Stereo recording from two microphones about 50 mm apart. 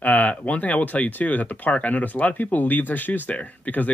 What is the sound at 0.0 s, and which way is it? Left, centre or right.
Speech, left.